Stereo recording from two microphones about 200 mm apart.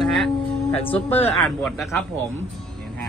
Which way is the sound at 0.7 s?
30° left (ahead or behind).